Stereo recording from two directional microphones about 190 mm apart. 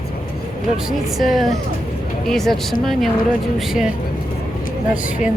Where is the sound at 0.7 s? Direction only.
Centre (ahead or behind).